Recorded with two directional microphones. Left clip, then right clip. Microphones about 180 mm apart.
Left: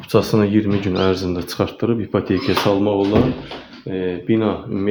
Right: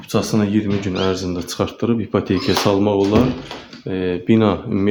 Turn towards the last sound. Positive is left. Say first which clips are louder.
# right 3 dB
turn(degrees=-35)  # may be behind; listen again after turning